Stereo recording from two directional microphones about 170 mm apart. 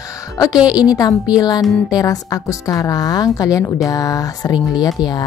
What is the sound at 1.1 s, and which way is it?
Speech, 5° right (ahead or behind).